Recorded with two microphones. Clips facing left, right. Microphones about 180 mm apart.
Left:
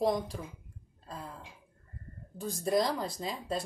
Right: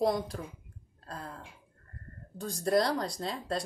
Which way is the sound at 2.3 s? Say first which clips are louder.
Right 2 dB; centre (ahead or behind).